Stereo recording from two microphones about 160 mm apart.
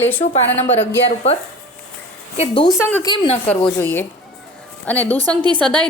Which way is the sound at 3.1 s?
35° left (ahead or behind).